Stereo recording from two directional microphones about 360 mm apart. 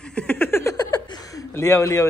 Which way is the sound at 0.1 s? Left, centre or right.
Centre.